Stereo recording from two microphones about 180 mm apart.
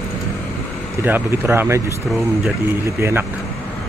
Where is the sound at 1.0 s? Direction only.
10° right (ahead or behind).